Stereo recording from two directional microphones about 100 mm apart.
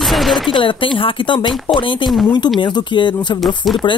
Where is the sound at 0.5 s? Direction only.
55° left (ahead or behind).